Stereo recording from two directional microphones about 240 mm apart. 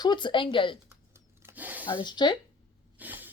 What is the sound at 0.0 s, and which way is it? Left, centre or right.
Speech, centre.